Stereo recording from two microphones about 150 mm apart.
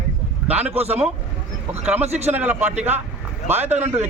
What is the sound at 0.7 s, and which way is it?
Speech, 45° right (ahead or behind).